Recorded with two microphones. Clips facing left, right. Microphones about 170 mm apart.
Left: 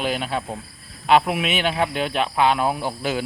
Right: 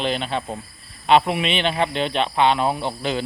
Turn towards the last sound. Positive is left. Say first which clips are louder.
# even
turn(degrees=5)  # may be behind; listen again after turning